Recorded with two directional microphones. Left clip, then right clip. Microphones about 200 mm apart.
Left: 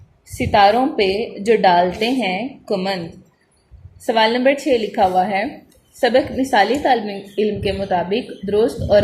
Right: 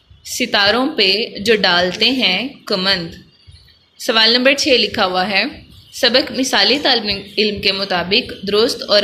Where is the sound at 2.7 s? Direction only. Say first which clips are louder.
Right 4 dB; 50° right (ahead or behind).